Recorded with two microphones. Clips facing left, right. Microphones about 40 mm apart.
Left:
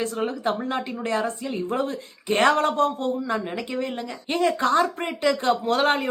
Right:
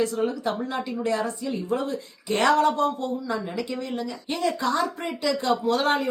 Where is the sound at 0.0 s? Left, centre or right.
Left.